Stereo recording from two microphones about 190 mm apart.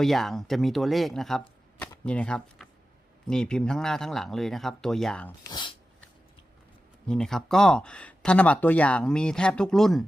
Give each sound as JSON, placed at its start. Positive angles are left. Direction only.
{"t": 0.0, "sound": "speech", "side_deg": 0}
{"t": 5.5, "sound": "a sound", "side_deg": 25}
{"t": 7.1, "sound": "speech", "side_deg": 5}